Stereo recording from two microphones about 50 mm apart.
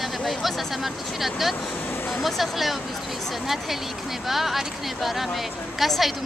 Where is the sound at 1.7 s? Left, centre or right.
Left.